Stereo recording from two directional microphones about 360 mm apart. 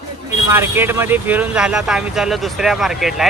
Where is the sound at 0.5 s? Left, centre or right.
Centre.